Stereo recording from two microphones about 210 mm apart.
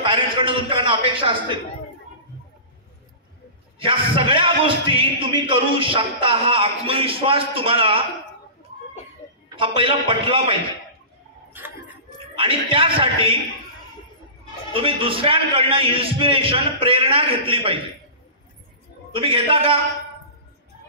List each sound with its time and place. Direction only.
0.0 s a man's voice: 25° right (ahead or behind)
3.8 s a man's voice: 25° right (ahead or behind)
9.6 s a man's voice: 25° right (ahead or behind)
11.6 s tick-tock: 10° right (ahead or behind)
12.4 s a man's voice: 25° right (ahead or behind)
14.7 s a man's voice: 25° right (ahead or behind)
19.1 s a man's voice: 25° right (ahead or behind)